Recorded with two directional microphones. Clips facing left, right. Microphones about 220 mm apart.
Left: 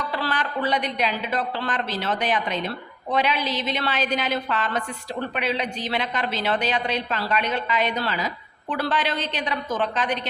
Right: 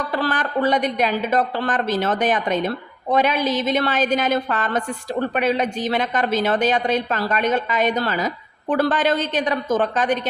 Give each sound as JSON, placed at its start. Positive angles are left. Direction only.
{"t": 0.0, "sound": "a woman's voice", "side_deg": -45}